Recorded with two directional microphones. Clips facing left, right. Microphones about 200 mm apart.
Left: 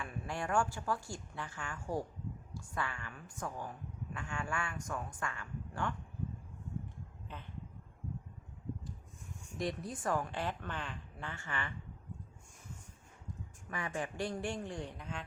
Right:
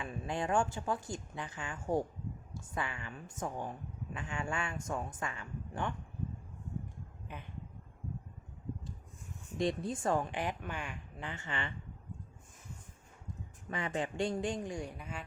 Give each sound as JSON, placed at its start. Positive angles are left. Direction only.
{"t": 0.0, "sound": "a woman's voice", "side_deg": -20}
{"t": 7.3, "sound": "speech", "side_deg": -10}
{"t": 9.6, "sound": "a woman's voice", "side_deg": -25}
{"t": 13.7, "sound": "a woman's voice", "side_deg": -20}